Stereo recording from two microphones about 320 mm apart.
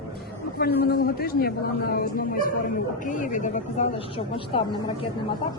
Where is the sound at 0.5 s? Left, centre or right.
Left.